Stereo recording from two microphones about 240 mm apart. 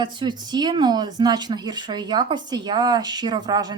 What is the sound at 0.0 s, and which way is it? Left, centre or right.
Speech, centre.